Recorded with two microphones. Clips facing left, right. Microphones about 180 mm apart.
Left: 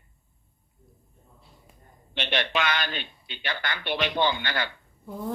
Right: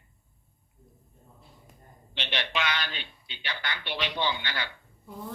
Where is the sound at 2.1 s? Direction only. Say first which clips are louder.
Left 5 dB; 50° left (ahead or behind).